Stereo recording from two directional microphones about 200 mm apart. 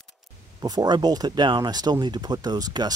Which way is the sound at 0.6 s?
20° right (ahead or behind).